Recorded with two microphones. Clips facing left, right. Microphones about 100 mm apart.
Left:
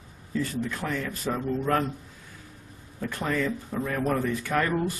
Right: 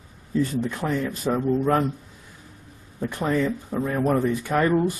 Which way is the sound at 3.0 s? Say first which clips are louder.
Right 4 dB; 20° right (ahead or behind).